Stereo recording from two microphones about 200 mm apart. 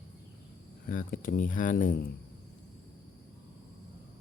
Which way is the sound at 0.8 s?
45° left (ahead or behind).